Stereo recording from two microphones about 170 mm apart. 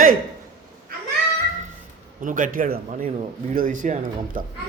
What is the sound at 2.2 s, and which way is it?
Speech, 50° right (ahead or behind).